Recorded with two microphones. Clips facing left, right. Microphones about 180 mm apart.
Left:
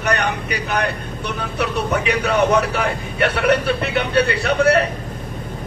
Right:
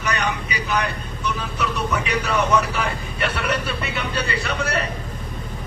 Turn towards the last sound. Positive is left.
turn(degrees=60)  # may be behind; listen again after turning